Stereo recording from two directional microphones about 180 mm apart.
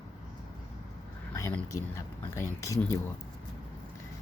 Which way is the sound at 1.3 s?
15° left (ahead or behind).